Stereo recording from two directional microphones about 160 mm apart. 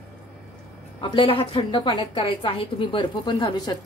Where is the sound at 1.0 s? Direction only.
30° left (ahead or behind).